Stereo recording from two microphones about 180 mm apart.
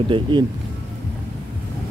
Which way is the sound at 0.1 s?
25° right (ahead or behind).